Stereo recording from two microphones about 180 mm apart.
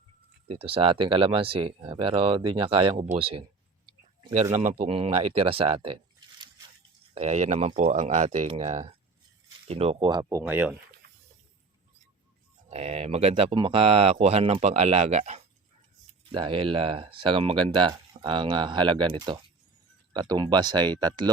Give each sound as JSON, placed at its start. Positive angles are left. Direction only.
{"t": 0.4, "sound": "speech", "side_deg": -30}
{"t": 3.8, "sound": "clicking", "side_deg": -25}
{"t": 4.5, "sound": "speech", "side_deg": -40}
{"t": 11.0, "sound": "a sound", "side_deg": -65}
{"t": 12.6, "sound": "speech", "side_deg": -35}